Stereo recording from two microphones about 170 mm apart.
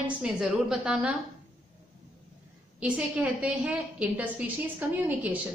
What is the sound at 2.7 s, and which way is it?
A woman's voice, 5° right (ahead or behind).